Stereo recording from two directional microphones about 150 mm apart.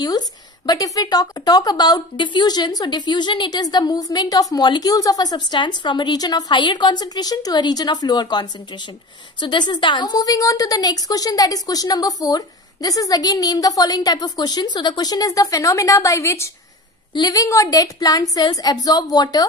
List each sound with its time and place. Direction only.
0.7 s a woman's voice: 25° left (ahead or behind)